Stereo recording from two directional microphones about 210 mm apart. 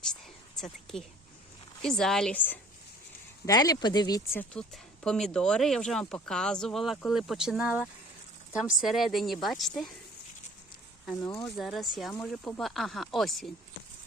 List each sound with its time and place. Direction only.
0.6 s a woman's voice: centre (ahead or behind)
11.0 s speech: 5° left (ahead or behind)